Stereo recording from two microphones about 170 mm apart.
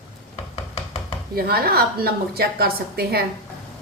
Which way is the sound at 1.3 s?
65° right (ahead or behind).